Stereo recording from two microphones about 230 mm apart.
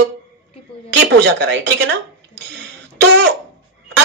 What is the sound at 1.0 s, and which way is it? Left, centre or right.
Speech, right.